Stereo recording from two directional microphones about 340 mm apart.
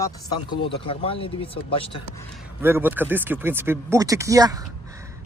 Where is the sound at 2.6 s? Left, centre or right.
Centre.